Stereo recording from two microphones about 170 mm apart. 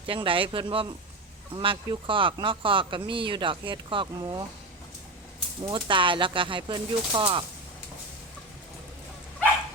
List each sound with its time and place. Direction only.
0.1 s speech: 30° right (ahead or behind)
5.6 s speech: 30° right (ahead or behind)